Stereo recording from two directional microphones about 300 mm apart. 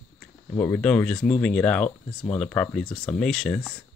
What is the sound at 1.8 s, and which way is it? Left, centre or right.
Speech, centre.